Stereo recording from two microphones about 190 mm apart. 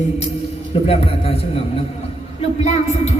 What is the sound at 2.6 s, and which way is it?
Speech, 35° left (ahead or behind).